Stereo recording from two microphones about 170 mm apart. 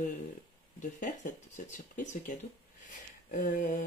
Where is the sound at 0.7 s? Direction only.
50° left (ahead or behind).